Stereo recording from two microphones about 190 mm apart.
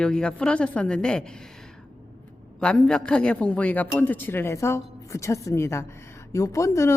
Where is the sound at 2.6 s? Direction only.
5° left (ahead or behind).